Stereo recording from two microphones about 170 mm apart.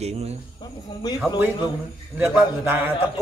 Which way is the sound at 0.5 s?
25° left (ahead or behind).